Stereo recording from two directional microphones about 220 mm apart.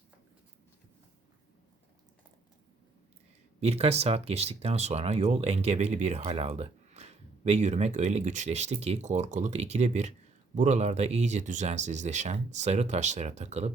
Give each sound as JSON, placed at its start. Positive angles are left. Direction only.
{"t": 3.6, "sound": "speech", "side_deg": -30}